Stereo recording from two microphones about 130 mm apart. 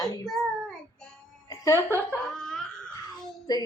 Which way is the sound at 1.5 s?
25° left (ahead or behind).